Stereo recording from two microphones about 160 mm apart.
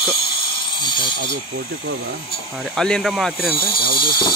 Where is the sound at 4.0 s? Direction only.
30° left (ahead or behind).